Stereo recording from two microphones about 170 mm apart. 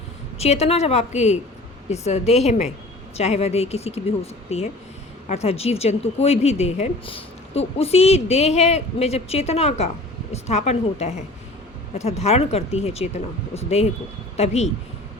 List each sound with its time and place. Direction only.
0.3 s a woman's voice: 40° left (ahead or behind)